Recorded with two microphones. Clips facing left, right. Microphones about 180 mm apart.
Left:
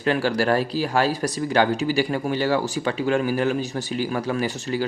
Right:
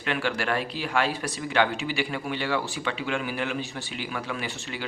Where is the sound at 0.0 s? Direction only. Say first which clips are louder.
Left 7 dB; 40° left (ahead or behind).